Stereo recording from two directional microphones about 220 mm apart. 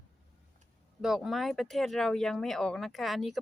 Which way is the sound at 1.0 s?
Centre (ahead or behind).